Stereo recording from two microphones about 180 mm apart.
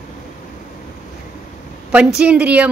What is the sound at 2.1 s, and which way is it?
Speech, 5° right (ahead or behind).